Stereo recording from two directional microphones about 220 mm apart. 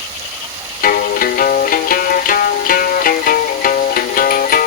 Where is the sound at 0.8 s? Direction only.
40° left (ahead or behind).